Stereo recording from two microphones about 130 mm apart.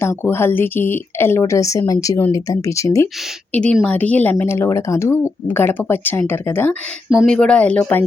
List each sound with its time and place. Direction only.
0.0 s speech: 20° left (ahead or behind)
3.5 s speech: 10° left (ahead or behind)